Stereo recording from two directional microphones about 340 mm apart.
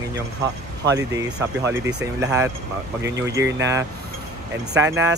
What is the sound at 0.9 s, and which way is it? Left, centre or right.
Speech, centre.